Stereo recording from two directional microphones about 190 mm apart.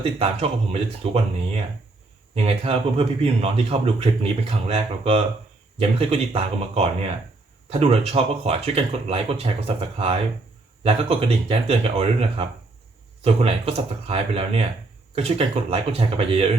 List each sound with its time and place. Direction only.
0.2 s speech: 30° right (ahead or behind)
2.3 s speech: 30° right (ahead or behind)